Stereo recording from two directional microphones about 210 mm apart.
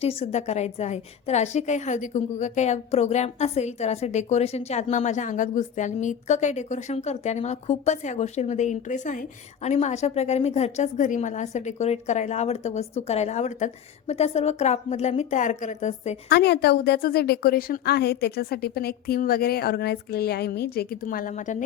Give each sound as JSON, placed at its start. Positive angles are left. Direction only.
{"t": 0.0, "sound": "a woman's voice", "side_deg": 30}
{"t": 16.3, "sound": "a woman's voice", "side_deg": 50}